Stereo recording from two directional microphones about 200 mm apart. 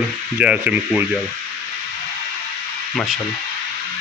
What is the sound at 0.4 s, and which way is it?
Speech, 5° right (ahead or behind).